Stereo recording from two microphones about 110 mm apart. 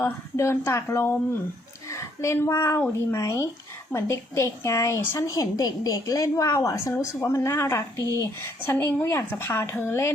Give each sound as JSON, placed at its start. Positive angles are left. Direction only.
{"t": 0.0, "sound": "a woman's voice", "side_deg": 25}
{"t": 8.0, "sound": "speech", "side_deg": -30}
{"t": 8.4, "sound": "a woman's voice", "side_deg": 20}